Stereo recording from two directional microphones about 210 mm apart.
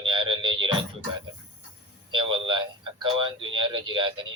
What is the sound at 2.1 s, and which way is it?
Speech, 25° right (ahead or behind).